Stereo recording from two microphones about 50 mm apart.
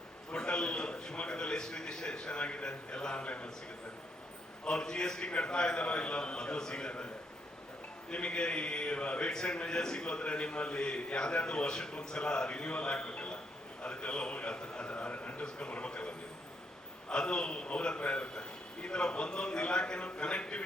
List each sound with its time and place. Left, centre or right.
0.3 s a man's voice: centre
4.6 s a man's voice: centre
8.1 s a man's voice: centre
13.8 s a sound: centre
15.4 s a man's voice: centre